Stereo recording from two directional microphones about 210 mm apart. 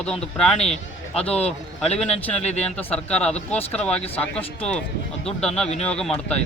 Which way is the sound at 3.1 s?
5° left (ahead or behind).